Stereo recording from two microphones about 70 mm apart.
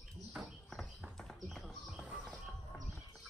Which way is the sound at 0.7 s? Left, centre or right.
Centre.